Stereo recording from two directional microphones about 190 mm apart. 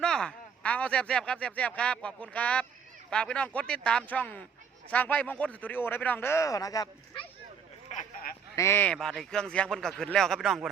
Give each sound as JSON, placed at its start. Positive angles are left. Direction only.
{"t": 0.0, "sound": "speech", "side_deg": 5}
{"t": 7.9, "sound": "a sound", "side_deg": 50}
{"t": 8.5, "sound": "speech", "side_deg": 15}